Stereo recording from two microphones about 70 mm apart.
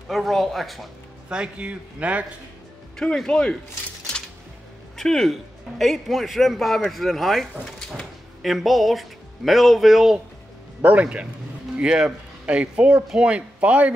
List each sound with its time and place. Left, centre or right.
0.1 s a man's voice: centre
1.3 s speech: centre
3.0 s speech: centre
4.9 s a man's voice: centre
10.8 s a man's voice: centre